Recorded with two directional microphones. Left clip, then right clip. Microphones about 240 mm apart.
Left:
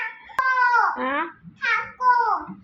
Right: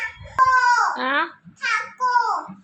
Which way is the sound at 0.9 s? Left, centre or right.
Centre.